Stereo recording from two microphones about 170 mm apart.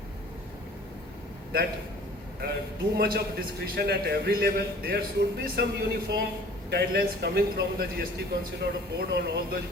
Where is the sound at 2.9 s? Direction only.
65° right (ahead or behind).